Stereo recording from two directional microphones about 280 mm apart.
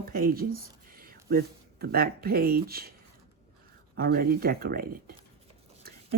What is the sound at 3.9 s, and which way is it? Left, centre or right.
Speech, right.